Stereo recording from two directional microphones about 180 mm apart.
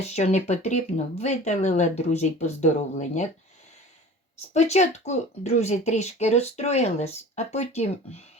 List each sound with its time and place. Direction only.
0.0 s speech: 35° left (ahead or behind)
4.5 s speech: 40° left (ahead or behind)